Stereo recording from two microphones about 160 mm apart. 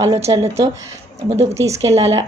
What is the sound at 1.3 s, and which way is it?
Speech, 40° right (ahead or behind).